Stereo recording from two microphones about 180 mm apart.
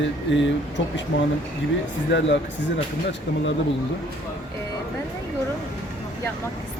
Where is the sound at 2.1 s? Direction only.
80° left.